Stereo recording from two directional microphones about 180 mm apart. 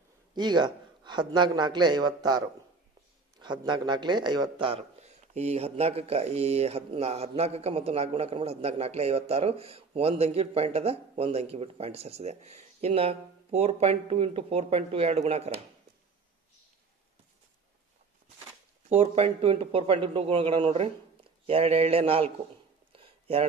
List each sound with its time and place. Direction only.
0.3 s a man's voice: 25° right (ahead or behind)
18.9 s a man's voice: 35° right (ahead or behind)
22.9 s a sound: 30° right (ahead or behind)